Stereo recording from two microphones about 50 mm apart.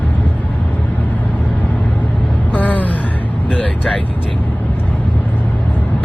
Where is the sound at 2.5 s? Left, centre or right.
Left.